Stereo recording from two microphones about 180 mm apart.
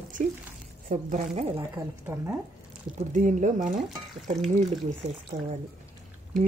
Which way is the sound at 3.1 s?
45° right (ahead or behind).